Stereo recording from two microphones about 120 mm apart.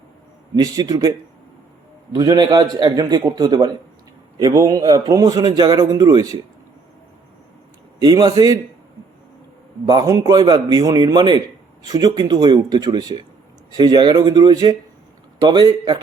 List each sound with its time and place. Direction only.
0.5 s a man's voice: 35° right (ahead or behind)
2.1 s a man's voice: 30° right (ahead or behind)
8.0 s a man's voice: 35° right (ahead or behind)
9.8 s a man's voice: 35° right (ahead or behind)